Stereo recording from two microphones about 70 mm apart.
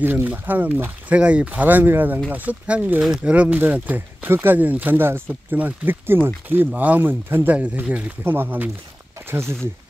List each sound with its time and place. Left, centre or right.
0.0 s speech: right
7.5 s speech: right
9.3 s speech: right